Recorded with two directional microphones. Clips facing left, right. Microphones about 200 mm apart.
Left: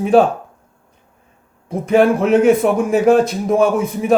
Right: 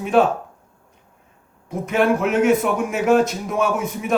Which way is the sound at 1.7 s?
35° left (ahead or behind).